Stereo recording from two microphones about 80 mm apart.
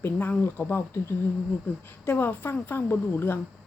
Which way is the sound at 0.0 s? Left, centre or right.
Left.